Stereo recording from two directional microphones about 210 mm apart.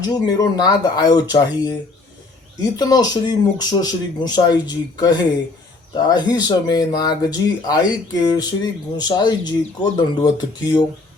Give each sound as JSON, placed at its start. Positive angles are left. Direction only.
{"t": 0.0, "sound": "speech", "side_deg": 20}